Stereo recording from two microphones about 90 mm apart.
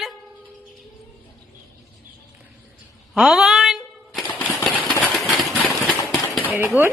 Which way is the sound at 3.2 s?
5° right (ahead or behind).